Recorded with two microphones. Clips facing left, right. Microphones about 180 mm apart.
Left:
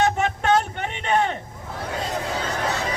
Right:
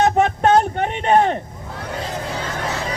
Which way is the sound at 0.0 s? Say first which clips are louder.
Right 6 dB; 40° right (ahead or behind).